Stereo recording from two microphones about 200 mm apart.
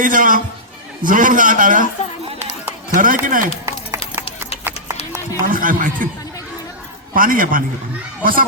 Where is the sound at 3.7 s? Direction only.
15° right (ahead or behind).